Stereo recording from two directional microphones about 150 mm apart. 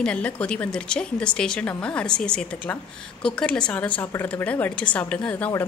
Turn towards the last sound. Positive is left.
turn(degrees=10)  # may be behind; listen again after turning